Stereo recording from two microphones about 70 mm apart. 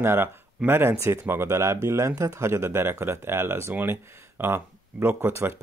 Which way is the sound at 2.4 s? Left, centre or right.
Right.